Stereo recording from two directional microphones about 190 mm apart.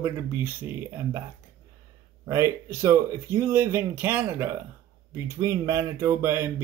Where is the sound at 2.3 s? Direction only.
15° right (ahead or behind).